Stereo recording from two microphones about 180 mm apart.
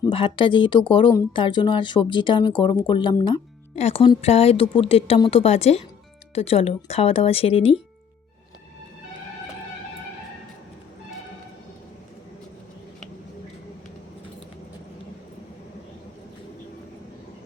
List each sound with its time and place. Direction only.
0.0 s speech: 30° left (ahead or behind)